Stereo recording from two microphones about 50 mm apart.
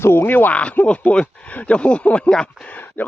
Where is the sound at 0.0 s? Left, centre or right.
Left.